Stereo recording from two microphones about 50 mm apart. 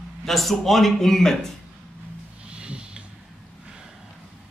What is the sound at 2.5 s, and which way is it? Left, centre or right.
Snort, centre.